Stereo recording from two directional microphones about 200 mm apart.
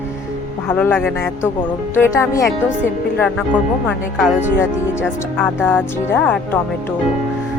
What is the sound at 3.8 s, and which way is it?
Speech, 5° right (ahead or behind).